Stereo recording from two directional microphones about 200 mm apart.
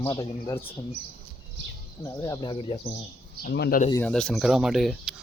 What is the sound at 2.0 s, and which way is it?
Speech, 15° left (ahead or behind).